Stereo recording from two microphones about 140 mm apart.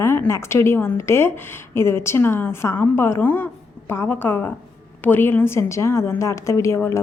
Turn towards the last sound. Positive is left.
turn(degrees=20)  # may be behind; listen again after turning